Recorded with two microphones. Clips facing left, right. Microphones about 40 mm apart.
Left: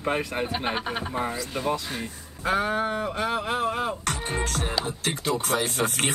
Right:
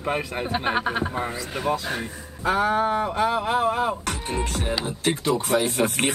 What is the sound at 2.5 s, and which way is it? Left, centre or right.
Speech, centre.